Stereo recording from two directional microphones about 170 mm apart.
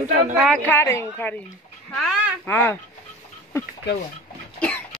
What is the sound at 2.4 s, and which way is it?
Speech, 10° left (ahead or behind).